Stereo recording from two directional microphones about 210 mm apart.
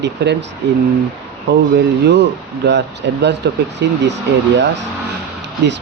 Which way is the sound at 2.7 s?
55° right (ahead or behind).